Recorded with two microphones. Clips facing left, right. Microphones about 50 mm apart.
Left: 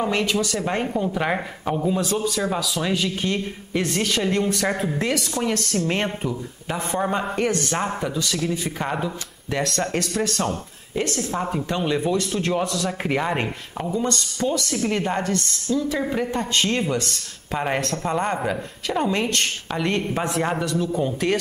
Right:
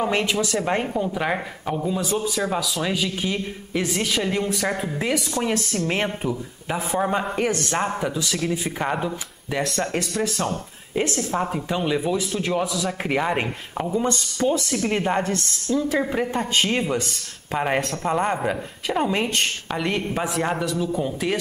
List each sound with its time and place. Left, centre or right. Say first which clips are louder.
0.1 s speech: even; right
0.9 s speech: left 1 dB; centre
4.9 s speech: even; centre
13.9 s speech: right 1 dB; centre
15.7 s speech: right 1 dB; right
16.0 s speech: right 1 dB; centre